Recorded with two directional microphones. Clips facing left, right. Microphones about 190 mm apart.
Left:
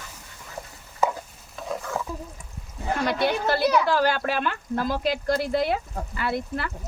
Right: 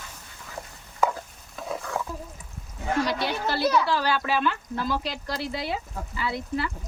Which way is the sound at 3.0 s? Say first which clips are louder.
Left 4 dB; 55° left (ahead or behind).